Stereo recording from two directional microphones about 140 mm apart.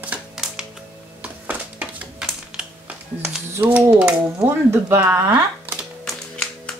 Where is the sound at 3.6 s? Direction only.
15° right (ahead or behind).